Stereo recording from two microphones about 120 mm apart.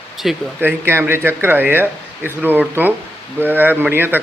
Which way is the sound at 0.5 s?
20° right (ahead or behind).